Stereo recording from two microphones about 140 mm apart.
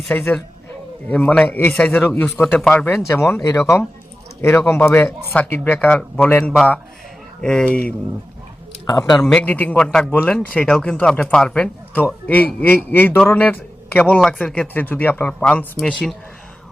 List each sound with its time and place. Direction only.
0.1 s a man's voice: 10° left (ahead or behind)
3.2 s a man's voice: 20° left (ahead or behind)
8.9 s speech: 30° left (ahead or behind)
9.2 s a man's voice: 5° left (ahead or behind)